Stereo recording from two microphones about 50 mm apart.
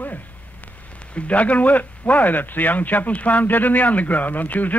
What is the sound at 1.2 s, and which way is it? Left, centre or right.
A man's voice, left.